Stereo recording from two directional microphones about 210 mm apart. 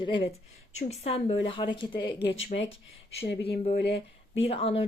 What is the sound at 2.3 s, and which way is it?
Speech, 65° left (ahead or behind).